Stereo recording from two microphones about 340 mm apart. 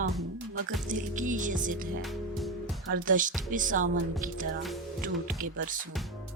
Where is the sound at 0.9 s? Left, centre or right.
Right.